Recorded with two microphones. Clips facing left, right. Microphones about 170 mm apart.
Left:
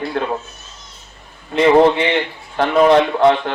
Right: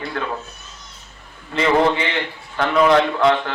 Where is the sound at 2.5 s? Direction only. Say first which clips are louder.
Left 3 dB; 35° left (ahead or behind).